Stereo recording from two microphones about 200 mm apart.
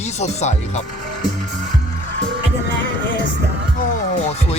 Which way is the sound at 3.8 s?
30° left (ahead or behind).